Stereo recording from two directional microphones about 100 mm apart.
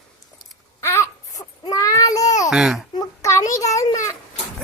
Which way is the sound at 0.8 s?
30° left (ahead or behind).